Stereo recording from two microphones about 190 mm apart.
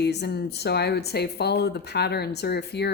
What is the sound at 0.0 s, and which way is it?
Speech, 60° left (ahead or behind).